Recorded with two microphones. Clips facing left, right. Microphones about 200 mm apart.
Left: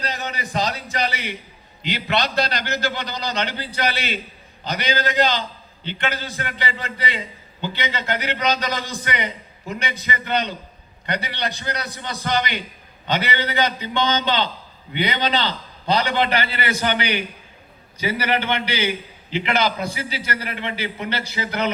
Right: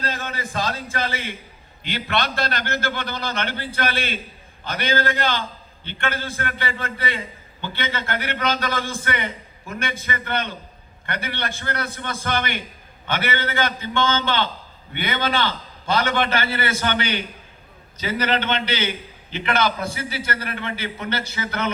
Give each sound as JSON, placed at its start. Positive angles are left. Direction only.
{"t": 0.0, "sound": "a man's voice", "side_deg": 15}
{"t": 2.6, "sound": "a man's voice", "side_deg": -55}
{"t": 3.2, "sound": "a man's voice", "side_deg": 15}